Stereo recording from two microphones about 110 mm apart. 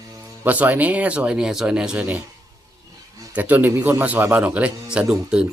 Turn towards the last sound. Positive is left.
turn(degrees=-10)  # may be behind; listen again after turning